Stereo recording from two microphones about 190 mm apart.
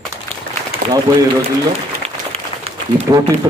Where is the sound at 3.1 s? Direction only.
20° right (ahead or behind).